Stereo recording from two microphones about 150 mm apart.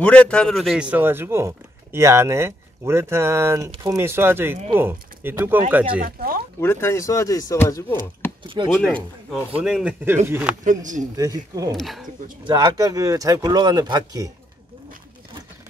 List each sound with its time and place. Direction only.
0.0 s speech: 10° left (ahead or behind); by 5.9 s 10° right (ahead or behind)
5.9 s speech: 70° right (ahead or behind)
6.6 s speech: 15° left (ahead or behind)
9.6 s speech: 5° right (ahead or behind)
10.6 s speech: 60° right (ahead or behind)
11.1 s speech: 25° right (ahead or behind)
11.7 s speech: centre (ahead or behind)
12.4 s speech: 30° right (ahead or behind)